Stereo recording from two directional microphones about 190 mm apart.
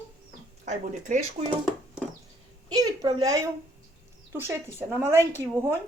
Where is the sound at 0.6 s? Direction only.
40° right (ahead or behind).